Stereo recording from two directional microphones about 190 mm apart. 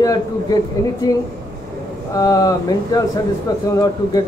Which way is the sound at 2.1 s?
20° left (ahead or behind).